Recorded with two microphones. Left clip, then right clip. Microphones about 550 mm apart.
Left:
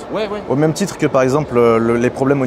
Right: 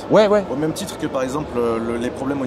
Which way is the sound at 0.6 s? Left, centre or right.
Left.